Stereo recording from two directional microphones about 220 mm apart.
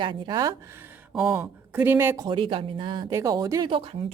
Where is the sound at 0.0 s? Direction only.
20° right (ahead or behind).